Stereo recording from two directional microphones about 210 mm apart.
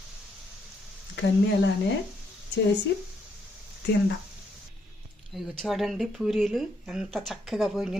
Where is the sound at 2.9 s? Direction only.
55° left (ahead or behind).